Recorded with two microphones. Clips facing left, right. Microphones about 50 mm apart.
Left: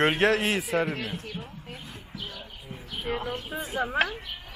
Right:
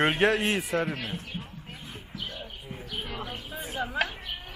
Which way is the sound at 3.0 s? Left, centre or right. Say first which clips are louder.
Left 6 dB; left.